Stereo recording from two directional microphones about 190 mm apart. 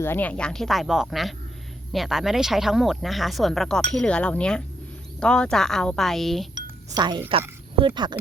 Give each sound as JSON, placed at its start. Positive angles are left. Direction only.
{"t": 0.0, "sound": "speech", "side_deg": 10}
{"t": 6.5, "sound": "chink", "side_deg": -25}
{"t": 7.8, "sound": "speech", "side_deg": -25}